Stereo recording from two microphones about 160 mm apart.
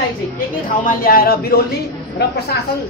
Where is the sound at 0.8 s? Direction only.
65° left (ahead or behind).